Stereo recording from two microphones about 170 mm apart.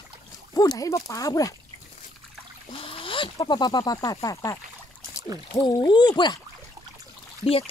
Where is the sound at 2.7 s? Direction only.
30° left (ahead or behind).